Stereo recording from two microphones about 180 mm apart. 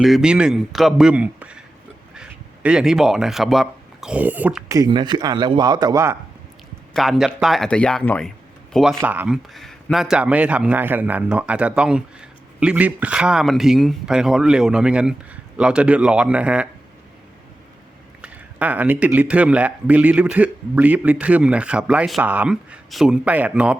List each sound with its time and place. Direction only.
0.0 s a man's voice: centre (ahead or behind)
4.8 s a man's voice: 25° right (ahead or behind)
6.9 s a man's voice: centre (ahead or behind)
18.2 s speech: 10° right (ahead or behind)